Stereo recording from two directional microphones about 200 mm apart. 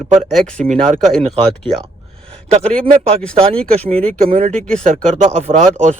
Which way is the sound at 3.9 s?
35° right (ahead or behind).